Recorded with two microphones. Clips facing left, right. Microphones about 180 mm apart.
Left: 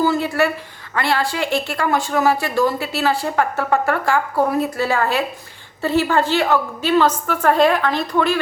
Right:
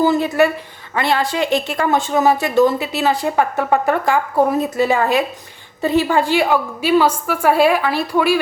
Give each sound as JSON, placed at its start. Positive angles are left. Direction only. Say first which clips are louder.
{"t": 0.0, "sound": "a woman's voice", "louder": "right 3 dB", "side_deg": -20}